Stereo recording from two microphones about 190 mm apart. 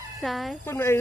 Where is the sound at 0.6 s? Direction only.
15° left (ahead or behind).